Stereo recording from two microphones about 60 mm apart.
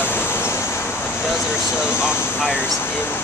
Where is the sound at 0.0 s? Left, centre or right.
Left.